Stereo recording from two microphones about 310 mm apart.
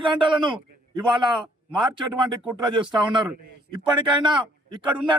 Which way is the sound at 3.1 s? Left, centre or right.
Centre.